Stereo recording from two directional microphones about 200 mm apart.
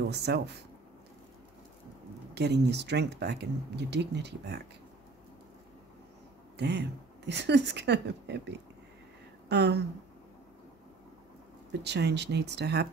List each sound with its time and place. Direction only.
0.1 s speech: 55° right (ahead or behind)
2.3 s speech: 55° right (ahead or behind)
6.5 s speech: 60° right (ahead or behind)
11.7 s speech: 60° right (ahead or behind)